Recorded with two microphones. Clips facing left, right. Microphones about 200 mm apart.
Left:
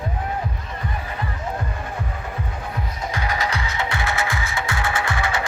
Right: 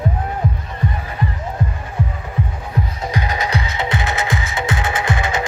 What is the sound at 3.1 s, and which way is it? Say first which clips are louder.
Music: right 2 dB; 20° right (ahead or behind).